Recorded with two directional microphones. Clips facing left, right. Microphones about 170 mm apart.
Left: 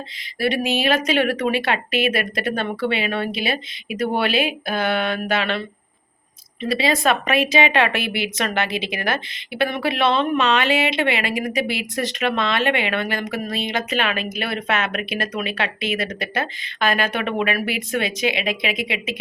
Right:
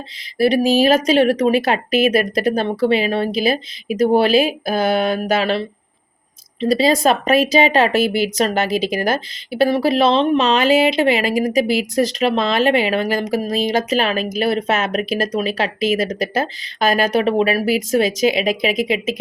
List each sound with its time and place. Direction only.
0.4 s speech: 35° right (ahead or behind)